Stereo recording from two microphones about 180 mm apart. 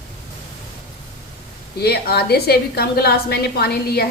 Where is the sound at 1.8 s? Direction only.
60° left (ahead or behind).